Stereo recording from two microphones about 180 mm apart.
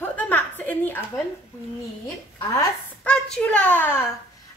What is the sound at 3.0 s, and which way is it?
A child's voice, 5° left (ahead or behind).